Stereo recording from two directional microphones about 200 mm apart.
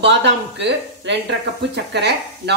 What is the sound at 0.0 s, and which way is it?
Speech, 60° right (ahead or behind).